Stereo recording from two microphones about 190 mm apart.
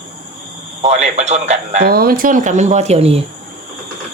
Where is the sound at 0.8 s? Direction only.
35° right (ahead or behind).